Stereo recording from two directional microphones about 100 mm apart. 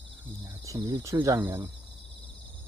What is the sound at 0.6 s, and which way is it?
Speech, 35° right (ahead or behind).